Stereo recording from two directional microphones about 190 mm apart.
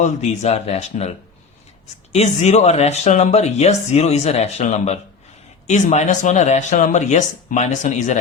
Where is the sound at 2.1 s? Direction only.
35° left (ahead or behind).